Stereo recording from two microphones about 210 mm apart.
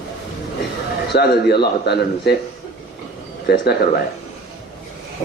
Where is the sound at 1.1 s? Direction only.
50° left (ahead or behind).